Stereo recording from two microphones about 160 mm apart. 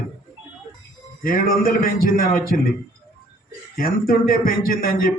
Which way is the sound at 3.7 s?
65° left (ahead or behind).